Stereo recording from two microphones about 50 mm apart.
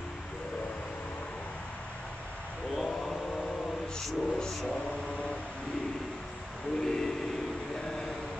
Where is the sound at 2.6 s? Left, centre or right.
Centre.